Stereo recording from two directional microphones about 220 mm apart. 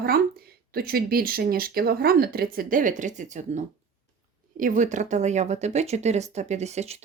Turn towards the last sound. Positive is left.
turn(degrees=-30)  # may be behind; listen again after turning